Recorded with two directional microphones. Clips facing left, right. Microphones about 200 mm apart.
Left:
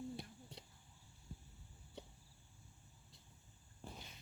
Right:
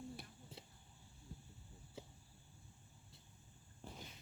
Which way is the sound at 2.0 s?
5° right (ahead or behind).